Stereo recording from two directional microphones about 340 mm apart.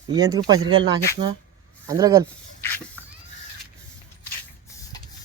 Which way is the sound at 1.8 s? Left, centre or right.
Centre.